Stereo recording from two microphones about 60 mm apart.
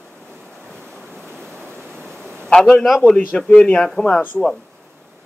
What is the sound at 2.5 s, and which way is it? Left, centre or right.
A man's voice, centre.